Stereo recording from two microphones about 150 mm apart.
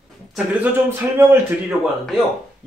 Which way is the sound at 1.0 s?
15° right (ahead or behind).